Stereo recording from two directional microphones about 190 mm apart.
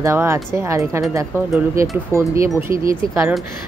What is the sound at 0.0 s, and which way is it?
Speech, 15° right (ahead or behind).